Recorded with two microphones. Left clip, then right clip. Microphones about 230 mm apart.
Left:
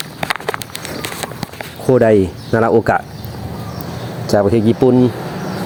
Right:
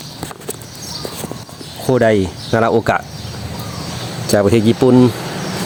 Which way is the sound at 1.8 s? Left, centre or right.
Centre.